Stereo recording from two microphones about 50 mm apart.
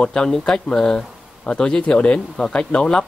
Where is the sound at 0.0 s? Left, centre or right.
Centre.